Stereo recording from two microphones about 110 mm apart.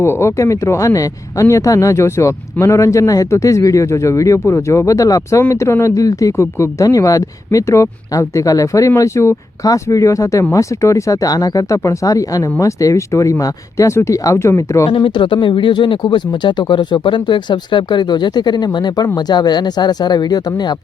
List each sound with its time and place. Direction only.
0.0 s speech: 25° left (ahead or behind)
14.8 s speech: 50° left (ahead or behind)